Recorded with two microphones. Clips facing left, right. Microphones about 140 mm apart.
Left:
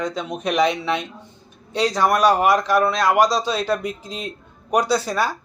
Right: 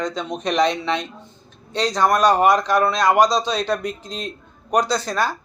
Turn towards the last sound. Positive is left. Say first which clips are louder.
# left 1 dB
turn(degrees=10)  # may be behind; listen again after turning